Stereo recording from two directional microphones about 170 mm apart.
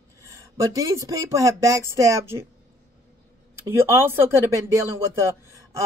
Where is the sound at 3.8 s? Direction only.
15° right (ahead or behind).